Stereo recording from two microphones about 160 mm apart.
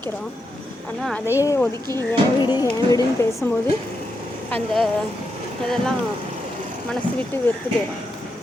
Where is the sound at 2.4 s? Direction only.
25° left (ahead or behind).